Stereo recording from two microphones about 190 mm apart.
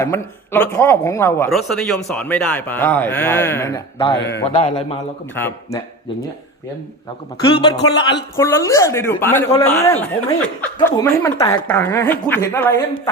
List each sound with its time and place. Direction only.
0.0 s speech: 10° left (ahead or behind)
1.5 s speech: centre (ahead or behind)
4.2 s a man's voice: 65° left (ahead or behind)
4.4 s speech: 25° left (ahead or behind)
5.3 s speech: 10° left (ahead or behind)
7.4 s speech: 25° left (ahead or behind)